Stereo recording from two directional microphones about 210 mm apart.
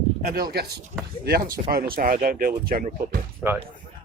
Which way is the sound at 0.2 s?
45° right (ahead or behind).